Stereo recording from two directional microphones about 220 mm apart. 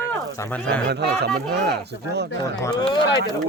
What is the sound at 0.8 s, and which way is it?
Speech, 45° right (ahead or behind).